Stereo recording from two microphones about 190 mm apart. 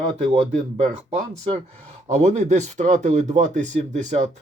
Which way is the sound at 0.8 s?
35° right (ahead or behind).